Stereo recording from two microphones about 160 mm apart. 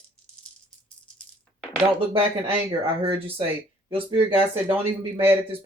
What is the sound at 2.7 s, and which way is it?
Speech, 35° right (ahead or behind).